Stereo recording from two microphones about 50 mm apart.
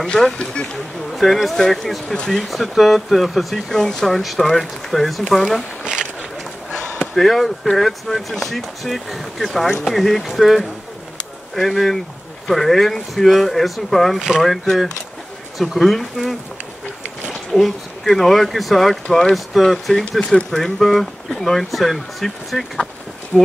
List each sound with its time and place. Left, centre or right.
0.0 s speech: centre
1.1 s speech: centre
6.7 s a sound: right
7.2 s speech: centre